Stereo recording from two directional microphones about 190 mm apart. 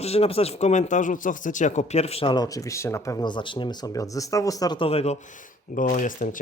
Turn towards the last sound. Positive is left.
turn(degrees=45)  # may be behind; listen again after turning